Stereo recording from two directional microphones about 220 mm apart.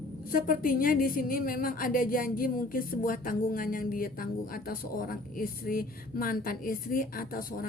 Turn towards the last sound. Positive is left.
turn(degrees=40)  # may be behind; listen again after turning